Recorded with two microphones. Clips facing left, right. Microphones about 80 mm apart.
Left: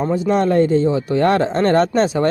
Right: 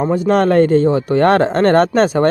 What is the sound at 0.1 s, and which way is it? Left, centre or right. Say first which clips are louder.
Speech: right 3 dB; right.